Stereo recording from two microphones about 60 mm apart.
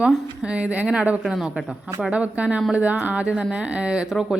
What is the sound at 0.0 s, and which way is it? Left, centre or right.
Speech, centre.